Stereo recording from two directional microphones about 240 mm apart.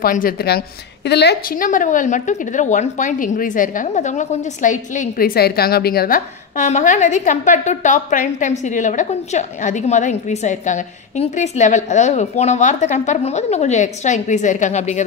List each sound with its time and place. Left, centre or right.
0.0 s a woman's voice: left